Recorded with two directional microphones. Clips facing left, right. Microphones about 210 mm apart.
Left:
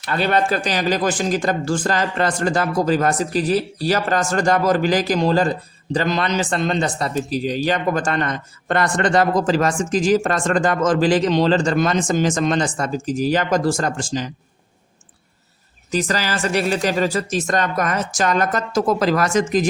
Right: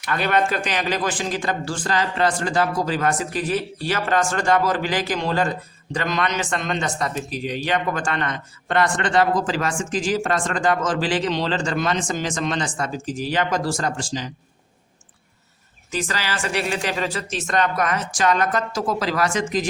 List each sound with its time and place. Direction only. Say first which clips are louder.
0.0 s speech: left 2 dB; 30° left (ahead or behind); by 14.3 s 50° left (ahead or behind)
15.9 s speech: left 5 dB; 40° left (ahead or behind)